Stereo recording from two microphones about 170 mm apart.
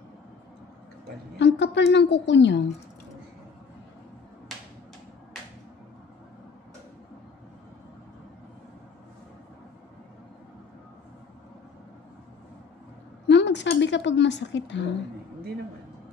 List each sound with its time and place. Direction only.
1.4 s a woman's voice: 90° left
13.3 s a woman's voice: 90° left